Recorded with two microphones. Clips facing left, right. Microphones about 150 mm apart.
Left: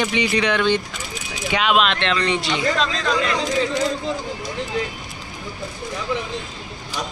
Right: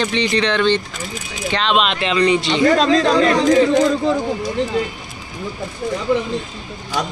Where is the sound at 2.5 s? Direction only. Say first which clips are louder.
Right 8 dB; 40° right (ahead or behind).